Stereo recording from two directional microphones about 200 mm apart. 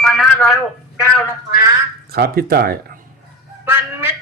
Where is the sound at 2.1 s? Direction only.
50° right (ahead or behind).